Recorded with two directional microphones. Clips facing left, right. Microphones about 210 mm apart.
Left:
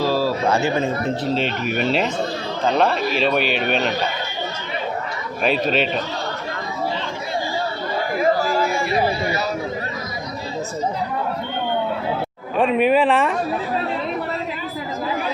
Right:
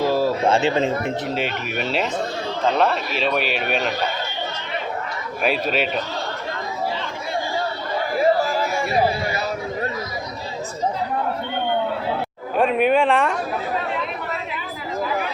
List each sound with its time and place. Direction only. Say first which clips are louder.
0.0 s a man's voice: right 1 dB; 20° right (ahead or behind); by 3.9 s 5° right (ahead or behind)
5.4 s speech: left 2 dB; 5° right (ahead or behind)
12.5 s a woman's voice: left 1 dB; centre (ahead or behind)